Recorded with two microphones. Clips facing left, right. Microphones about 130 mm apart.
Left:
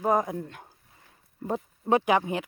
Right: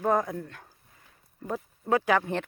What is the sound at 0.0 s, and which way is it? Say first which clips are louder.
Speech: left 1 dB; 15° left (ahead or behind).